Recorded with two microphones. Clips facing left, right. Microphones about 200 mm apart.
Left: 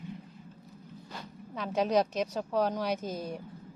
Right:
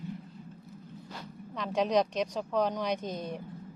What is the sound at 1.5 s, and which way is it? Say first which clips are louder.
A woman's voice: even; 5° left (ahead or behind).